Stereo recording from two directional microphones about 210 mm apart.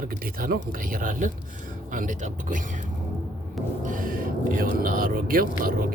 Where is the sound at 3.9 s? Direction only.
40° right (ahead or behind).